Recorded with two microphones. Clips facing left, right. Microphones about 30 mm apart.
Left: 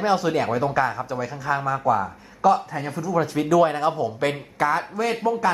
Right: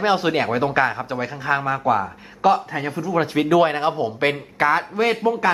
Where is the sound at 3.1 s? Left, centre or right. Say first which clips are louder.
Right 2 dB; right.